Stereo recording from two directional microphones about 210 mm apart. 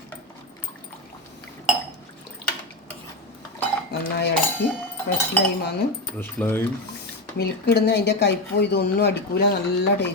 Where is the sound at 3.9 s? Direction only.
55° left (ahead or behind).